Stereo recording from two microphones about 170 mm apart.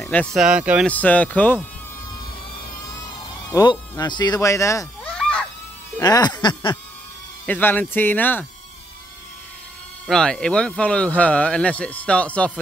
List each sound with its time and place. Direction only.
0.0 s speech: 5° left (ahead or behind)
0.8 s speech: 10° left (ahead or behind)
4.0 s speech: 25° left (ahead or behind)
5.0 s a sound: 5° left (ahead or behind)
5.9 s speech: 20° left (ahead or behind)
7.4 s speech: 10° left (ahead or behind)
10.0 s speech: 5° left (ahead or behind)